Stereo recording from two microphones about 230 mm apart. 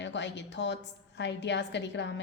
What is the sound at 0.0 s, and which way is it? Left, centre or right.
A woman's voice, left.